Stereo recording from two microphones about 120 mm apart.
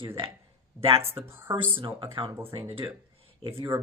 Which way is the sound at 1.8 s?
45° right (ahead or behind).